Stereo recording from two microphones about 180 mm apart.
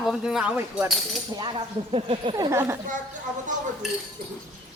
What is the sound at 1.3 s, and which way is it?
Speech, 25° right (ahead or behind).